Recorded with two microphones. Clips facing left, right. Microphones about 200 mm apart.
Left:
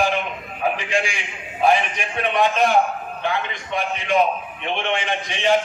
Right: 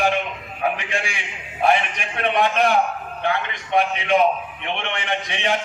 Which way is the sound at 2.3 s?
60° right (ahead or behind).